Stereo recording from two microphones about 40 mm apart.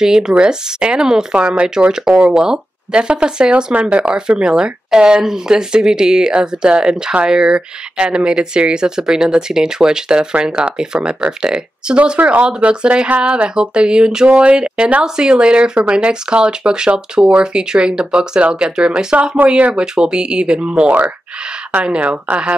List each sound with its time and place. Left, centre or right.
0.0 s speech: centre
19.5 s speech: right
19.8 s speech: right